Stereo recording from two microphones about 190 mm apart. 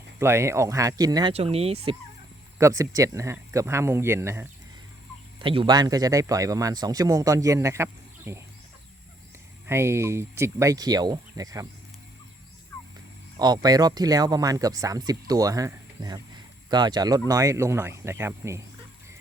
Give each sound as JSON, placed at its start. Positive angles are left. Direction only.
{"t": 0.2, "sound": "speech", "side_deg": -15}
{"t": 1.3, "sound": "speech", "side_deg": -30}
{"t": 2.6, "sound": "speech", "side_deg": -15}
{"t": 5.4, "sound": "speech", "side_deg": -25}
{"t": 9.6, "sound": "speech", "side_deg": -15}
{"t": 13.3, "sound": "speech", "side_deg": -20}